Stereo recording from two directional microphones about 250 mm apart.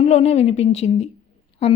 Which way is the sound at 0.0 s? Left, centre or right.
Left.